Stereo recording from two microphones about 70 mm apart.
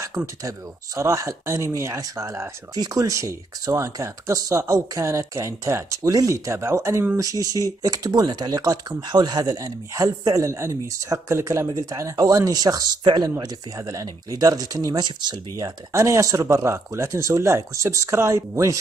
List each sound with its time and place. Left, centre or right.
0.4 s speech: right
2.7 s speech: right
7.2 s speech: right
8.8 s speech: right
10.3 s speech: right
11.6 s speech: right
13.7 s speech: right
15.9 s speech: right